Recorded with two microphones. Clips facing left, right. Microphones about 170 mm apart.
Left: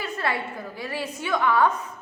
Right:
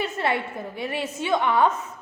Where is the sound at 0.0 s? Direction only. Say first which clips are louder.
Right 3 dB; 25° right (ahead or behind).